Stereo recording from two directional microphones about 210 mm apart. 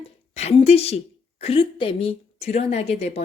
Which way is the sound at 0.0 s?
30° left (ahead or behind).